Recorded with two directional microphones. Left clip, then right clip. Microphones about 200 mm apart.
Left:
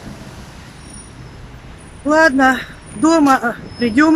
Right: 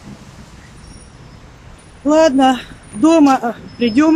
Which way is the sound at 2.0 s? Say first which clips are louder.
Even; 10° right (ahead or behind).